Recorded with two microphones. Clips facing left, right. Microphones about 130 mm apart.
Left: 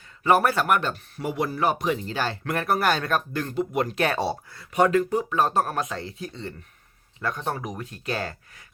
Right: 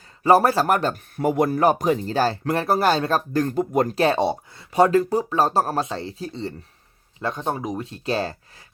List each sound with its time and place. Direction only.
0.2 s speech: 30° right (ahead or behind)
1.1 s speech: 50° right (ahead or behind)
4.0 s speech: 25° right (ahead or behind)